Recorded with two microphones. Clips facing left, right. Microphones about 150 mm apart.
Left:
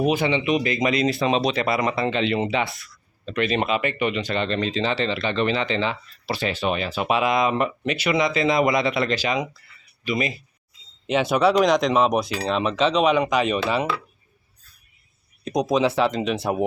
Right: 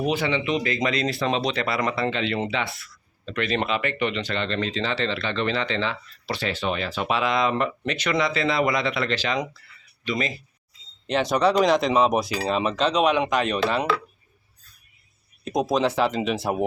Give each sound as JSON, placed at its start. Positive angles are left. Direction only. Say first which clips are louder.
{"t": 0.0, "sound": "speech", "louder": "left 3 dB", "side_deg": 15}
{"t": 15.4, "sound": "speech", "louder": "left 2 dB", "side_deg": 0}